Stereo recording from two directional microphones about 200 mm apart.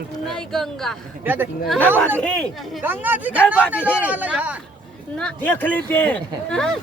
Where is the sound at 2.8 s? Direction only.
10° right (ahead or behind).